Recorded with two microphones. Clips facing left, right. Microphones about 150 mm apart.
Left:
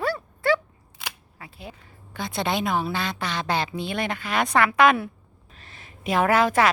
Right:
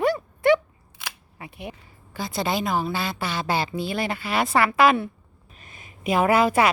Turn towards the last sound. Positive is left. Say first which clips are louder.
# right 1 dB
turn(degrees=-10)  # may be behind; listen again after turning